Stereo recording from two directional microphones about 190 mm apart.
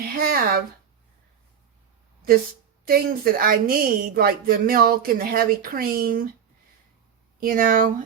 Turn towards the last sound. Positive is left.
turn(degrees=-45)  # may be behind; listen again after turning